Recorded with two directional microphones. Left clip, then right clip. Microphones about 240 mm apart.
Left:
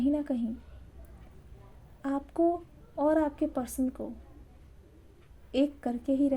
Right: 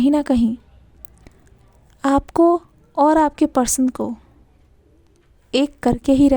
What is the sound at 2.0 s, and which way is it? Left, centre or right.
Speech, right.